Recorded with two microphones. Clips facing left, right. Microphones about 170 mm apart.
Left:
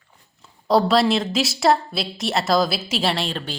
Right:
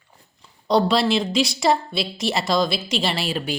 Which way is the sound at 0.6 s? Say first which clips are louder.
Left 1 dB; centre (ahead or behind).